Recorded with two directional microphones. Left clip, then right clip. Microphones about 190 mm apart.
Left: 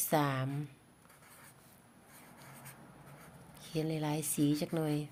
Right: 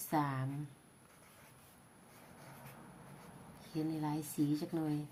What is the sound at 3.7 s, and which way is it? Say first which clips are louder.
Speech: left 3 dB; 55° left (ahead or behind).